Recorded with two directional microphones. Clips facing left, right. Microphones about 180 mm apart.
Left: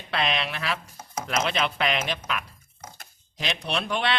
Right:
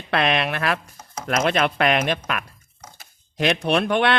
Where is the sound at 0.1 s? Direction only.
55° right (ahead or behind).